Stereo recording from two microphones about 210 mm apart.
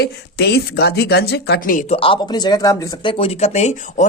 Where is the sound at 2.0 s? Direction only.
20° left (ahead or behind).